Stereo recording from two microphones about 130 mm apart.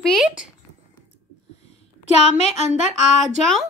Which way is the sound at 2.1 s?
55° left (ahead or behind).